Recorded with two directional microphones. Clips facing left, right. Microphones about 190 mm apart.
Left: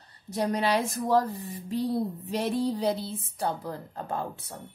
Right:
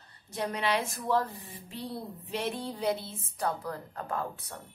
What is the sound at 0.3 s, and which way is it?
Speech, 40° left (ahead or behind).